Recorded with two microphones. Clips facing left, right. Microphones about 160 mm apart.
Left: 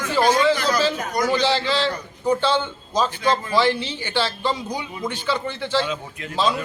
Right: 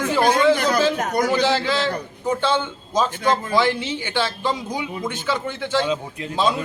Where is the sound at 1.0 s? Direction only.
55° right (ahead or behind).